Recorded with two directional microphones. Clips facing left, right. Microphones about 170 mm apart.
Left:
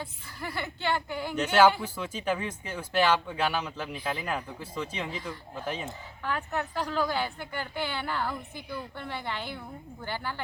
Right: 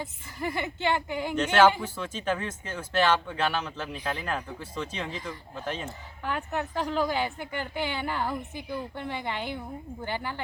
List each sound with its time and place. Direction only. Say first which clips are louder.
0.0 s a woman's voice: right 5 dB; 20° right (ahead or behind)
1.4 s speech: even; 10° left (ahead or behind)
6.2 s a woman's voice: right 1 dB; 15° right (ahead or behind)